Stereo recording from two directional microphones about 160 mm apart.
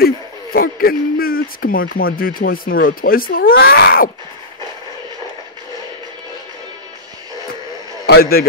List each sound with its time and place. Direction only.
0.0 s speech: 70° left (ahead or behind)
8.1 s a man's voice: 70° left (ahead or behind)